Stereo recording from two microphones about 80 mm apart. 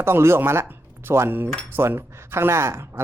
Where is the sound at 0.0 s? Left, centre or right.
Right.